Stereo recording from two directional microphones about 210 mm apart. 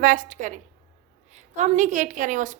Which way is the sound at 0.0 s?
40° right (ahead or behind).